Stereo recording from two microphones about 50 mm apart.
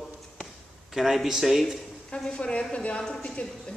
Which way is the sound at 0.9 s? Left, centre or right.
Centre.